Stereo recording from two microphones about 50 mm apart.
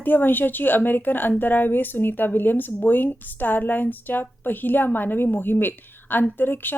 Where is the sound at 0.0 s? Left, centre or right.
Left.